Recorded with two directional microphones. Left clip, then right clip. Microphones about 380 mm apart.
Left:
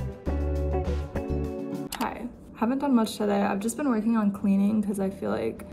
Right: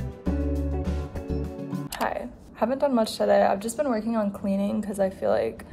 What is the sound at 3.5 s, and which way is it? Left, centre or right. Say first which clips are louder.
Speech: right 3 dB; right.